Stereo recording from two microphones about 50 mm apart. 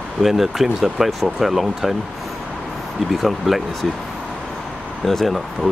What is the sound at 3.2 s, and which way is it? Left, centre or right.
Speech, centre.